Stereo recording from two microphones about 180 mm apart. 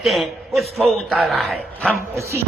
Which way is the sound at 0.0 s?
Centre (ahead or behind).